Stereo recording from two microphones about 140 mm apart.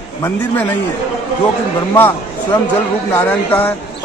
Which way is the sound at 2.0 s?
15° left (ahead or behind).